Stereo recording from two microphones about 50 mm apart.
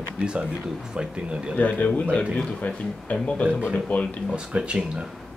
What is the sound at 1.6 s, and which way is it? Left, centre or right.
Speech, left.